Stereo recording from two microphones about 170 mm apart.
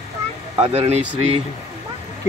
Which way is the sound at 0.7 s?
40° right (ahead or behind).